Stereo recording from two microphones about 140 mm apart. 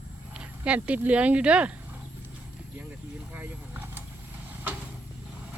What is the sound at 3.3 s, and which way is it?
Vehicle, 15° right (ahead or behind).